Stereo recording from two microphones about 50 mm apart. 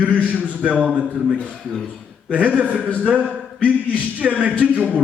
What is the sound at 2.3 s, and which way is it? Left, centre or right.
A man's voice, right.